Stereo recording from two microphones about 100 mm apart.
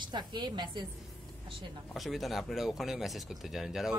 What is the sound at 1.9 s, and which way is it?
Speech, centre (ahead or behind).